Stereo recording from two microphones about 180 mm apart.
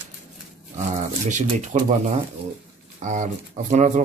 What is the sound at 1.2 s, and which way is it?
Speech, 45° right (ahead or behind).